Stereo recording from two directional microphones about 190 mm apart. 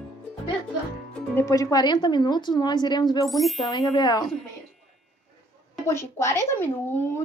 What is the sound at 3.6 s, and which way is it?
Speech, 20° left (ahead or behind).